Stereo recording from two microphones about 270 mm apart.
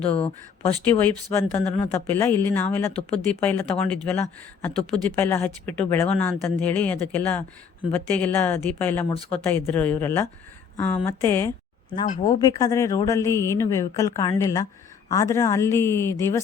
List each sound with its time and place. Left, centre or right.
0.9 s speech: centre
12.0 s speech: left
12.4 s speech: centre